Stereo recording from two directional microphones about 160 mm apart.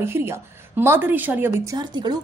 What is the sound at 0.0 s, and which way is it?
Speech, 15° right (ahead or behind).